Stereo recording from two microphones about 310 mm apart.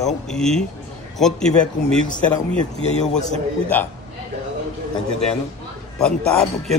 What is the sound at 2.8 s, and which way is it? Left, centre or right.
Speech, left.